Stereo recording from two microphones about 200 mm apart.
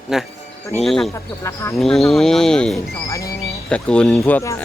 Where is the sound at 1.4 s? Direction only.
15° left (ahead or behind).